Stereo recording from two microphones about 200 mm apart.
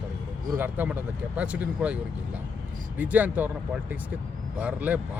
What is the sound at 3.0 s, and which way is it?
Speech, 10° right (ahead or behind).